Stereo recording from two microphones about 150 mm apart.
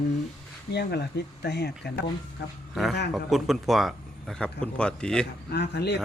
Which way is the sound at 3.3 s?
Centre (ahead or behind).